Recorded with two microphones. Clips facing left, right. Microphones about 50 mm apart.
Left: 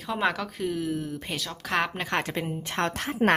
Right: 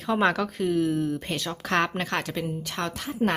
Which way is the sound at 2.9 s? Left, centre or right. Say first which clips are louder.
Left 2 dB; left.